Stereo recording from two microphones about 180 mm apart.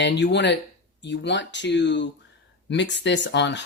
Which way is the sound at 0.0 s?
70° left (ahead or behind).